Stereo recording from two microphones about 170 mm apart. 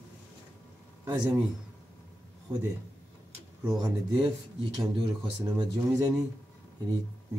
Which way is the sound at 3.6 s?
25° right (ahead or behind).